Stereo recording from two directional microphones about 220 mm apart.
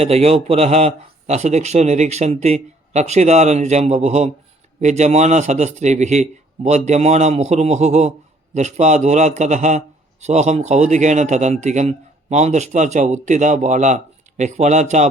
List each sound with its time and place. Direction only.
0.0 s a man's voice: 30° right (ahead or behind)